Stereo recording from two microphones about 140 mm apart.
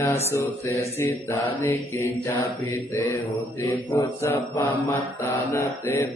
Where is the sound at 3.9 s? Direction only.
15° left (ahead or behind).